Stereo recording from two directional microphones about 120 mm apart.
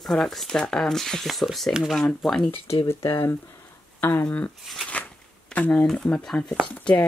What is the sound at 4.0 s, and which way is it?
Speech, 15° left (ahead or behind).